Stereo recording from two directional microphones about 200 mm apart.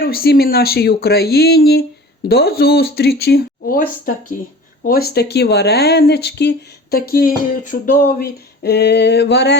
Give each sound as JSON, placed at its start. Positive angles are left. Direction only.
{"t": 0.0, "sound": "speech", "side_deg": 50}